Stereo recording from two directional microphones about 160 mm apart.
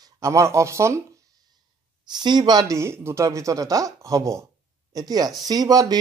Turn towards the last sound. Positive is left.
turn(degrees=-25)  # may be behind; listen again after turning